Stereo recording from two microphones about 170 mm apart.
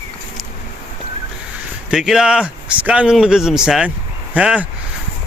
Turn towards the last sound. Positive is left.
turn(degrees=-5)  # may be behind; listen again after turning